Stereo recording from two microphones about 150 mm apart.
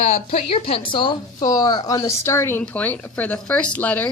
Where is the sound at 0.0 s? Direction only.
45° left (ahead or behind).